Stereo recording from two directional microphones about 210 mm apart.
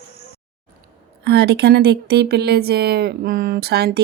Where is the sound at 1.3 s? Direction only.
50° right (ahead or behind).